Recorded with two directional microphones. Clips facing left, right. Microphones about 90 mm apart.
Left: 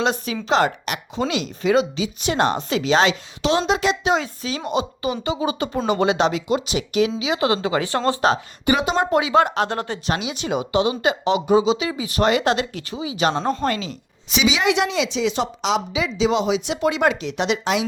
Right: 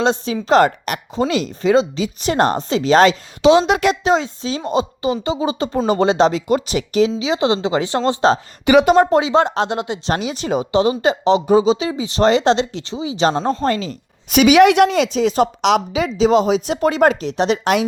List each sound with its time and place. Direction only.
0.0 s speech: 30° right (ahead or behind)
0.4 s speech: 45° right (ahead or behind)
3.7 s a woman's voice: 60° right (ahead or behind)
4.0 s a woman's voice: 30° right (ahead or behind)
7.2 s speech: 25° right (ahead or behind)
8.8 s a woman's voice: 50° right (ahead or behind)
9.0 s speech: 30° right (ahead or behind)
10.1 s speech: 40° right (ahead or behind)
14.3 s a woman's voice: 55° right (ahead or behind); by 17.6 s 40° right (ahead or behind)